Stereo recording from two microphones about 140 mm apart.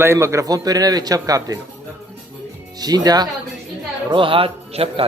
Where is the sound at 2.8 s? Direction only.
30° right (ahead or behind).